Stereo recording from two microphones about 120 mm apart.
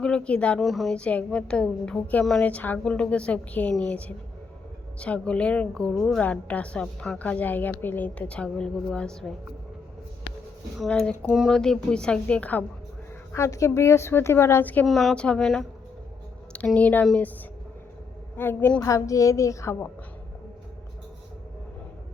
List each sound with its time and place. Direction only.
0.0 s a woman's voice: 10° left (ahead or behind)
10.8 s a woman's voice: 5° left (ahead or behind)
13.3 s a woman's voice: 25° left (ahead or behind)
14.8 s speech: centre (ahead or behind)
16.8 s a woman's voice: 10° left (ahead or behind)
18.3 s a woman's voice: 15° left (ahead or behind)